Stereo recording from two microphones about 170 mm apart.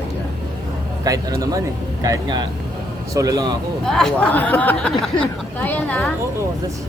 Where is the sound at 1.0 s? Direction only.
20° right (ahead or behind).